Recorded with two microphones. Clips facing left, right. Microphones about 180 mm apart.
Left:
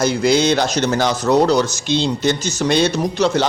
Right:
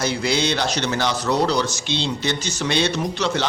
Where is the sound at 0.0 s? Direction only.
45° left (ahead or behind).